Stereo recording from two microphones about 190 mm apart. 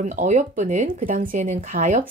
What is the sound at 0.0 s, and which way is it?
A woman's voice, 40° right (ahead or behind).